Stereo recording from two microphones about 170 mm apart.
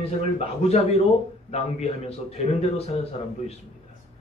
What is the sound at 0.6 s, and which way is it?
Speech, 35° left (ahead or behind).